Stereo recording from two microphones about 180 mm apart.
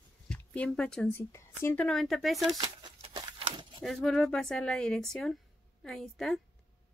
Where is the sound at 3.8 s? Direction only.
Centre (ahead or behind).